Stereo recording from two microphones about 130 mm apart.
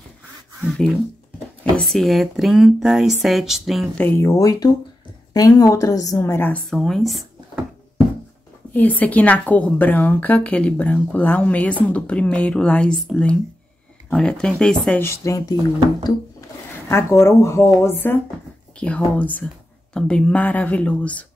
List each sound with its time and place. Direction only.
0.6 s speech: centre (ahead or behind)
4.0 s a woman's voice: 15° left (ahead or behind)
6.7 s speech: 5° left (ahead or behind)
8.7 s a woman's voice: 15° left (ahead or behind)
15.0 s a woman's voice: 20° left (ahead or behind)
16.9 s a woman's voice: 20° left (ahead or behind)